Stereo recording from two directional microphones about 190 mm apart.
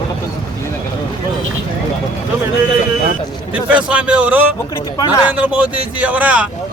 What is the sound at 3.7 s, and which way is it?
A man's voice, 5° right (ahead or behind).